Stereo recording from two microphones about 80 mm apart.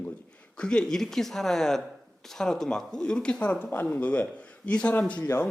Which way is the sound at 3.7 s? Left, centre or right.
Left.